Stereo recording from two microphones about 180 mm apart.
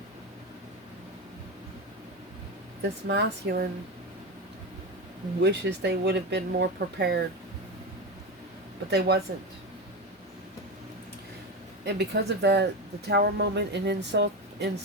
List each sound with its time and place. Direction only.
3.1 s speech: 65° right (ahead or behind)
5.4 s speech: 70° right (ahead or behind)
8.9 s speech: 65° right (ahead or behind)
11.9 s speech: 65° right (ahead or behind)